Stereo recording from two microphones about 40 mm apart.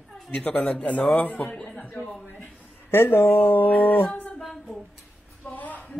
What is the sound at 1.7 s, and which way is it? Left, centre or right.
Speech, left.